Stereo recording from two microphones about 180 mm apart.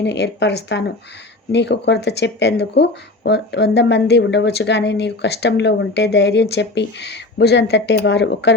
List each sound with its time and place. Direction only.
0.0 s speech: 70° left (ahead or behind)